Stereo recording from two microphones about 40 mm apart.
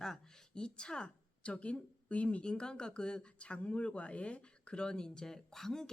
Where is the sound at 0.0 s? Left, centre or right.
Centre.